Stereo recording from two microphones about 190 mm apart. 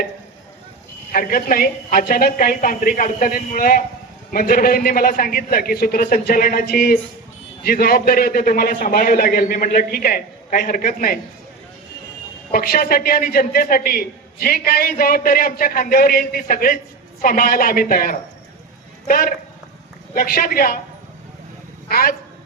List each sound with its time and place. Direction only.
1.1 s a man's voice: 50° left (ahead or behind)
12.5 s a man's voice: 50° left (ahead or behind)
21.8 s a man's voice: 50° left (ahead or behind)